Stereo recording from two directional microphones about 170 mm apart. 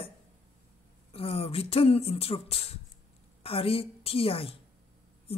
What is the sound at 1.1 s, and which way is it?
A woman's voice, 35° left (ahead or behind).